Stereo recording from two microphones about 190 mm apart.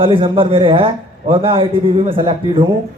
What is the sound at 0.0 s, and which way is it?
A man's voice, 25° right (ahead or behind).